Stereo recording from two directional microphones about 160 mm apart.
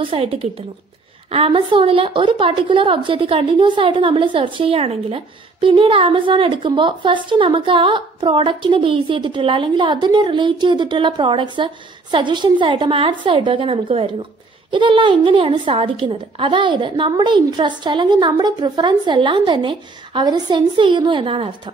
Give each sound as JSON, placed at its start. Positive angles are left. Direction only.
{"t": 0.0, "sound": "a woman's voice", "side_deg": -35}